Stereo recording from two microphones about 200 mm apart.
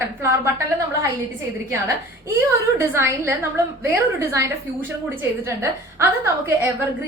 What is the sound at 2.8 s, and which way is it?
A woman's voice, 10° right (ahead or behind).